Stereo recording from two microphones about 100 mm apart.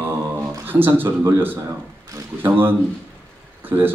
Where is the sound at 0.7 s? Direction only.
20° right (ahead or behind).